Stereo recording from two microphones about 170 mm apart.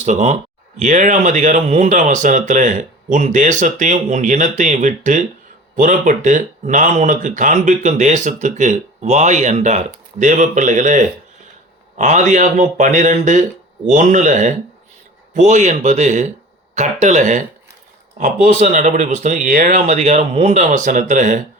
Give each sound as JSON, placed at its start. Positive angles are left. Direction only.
{"t": 0.0, "sound": "speech", "side_deg": -45}